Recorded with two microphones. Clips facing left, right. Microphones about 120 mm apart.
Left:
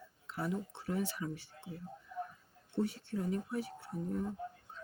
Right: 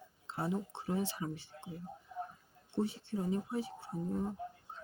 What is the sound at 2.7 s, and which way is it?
Speech, 25° right (ahead or behind).